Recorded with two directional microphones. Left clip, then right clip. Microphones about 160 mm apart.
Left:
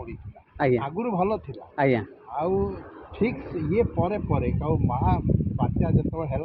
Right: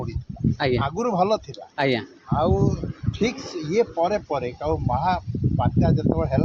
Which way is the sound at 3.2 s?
20° right (ahead or behind).